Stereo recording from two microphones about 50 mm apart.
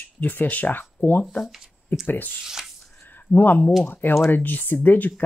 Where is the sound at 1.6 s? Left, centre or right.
Centre.